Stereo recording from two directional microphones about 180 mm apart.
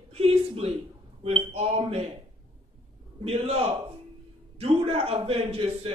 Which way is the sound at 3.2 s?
35° right (ahead or behind).